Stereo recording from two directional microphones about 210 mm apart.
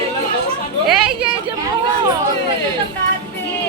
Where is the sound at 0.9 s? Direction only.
5° right (ahead or behind).